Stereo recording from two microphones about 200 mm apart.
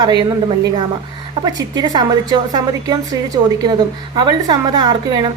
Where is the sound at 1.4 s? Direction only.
20° right (ahead or behind).